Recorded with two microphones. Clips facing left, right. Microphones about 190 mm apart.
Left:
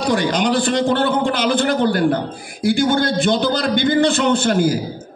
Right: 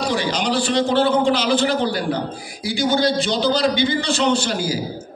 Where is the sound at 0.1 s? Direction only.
50° left (ahead or behind).